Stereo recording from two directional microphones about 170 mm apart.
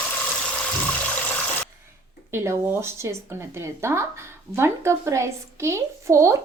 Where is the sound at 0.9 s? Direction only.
10° left (ahead or behind).